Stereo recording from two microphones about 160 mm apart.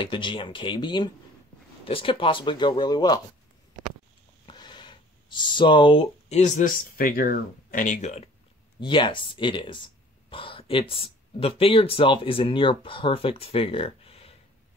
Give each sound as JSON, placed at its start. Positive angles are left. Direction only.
{"t": 0.0, "sound": "speech", "side_deg": 30}
{"t": 4.5, "sound": "speech", "side_deg": 30}
{"t": 8.7, "sound": "speech", "side_deg": 30}